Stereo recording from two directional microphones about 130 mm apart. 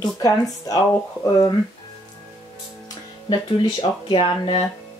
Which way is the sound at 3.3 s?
35° left (ahead or behind).